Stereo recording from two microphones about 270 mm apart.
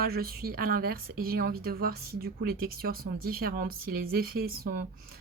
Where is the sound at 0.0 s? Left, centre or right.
Right.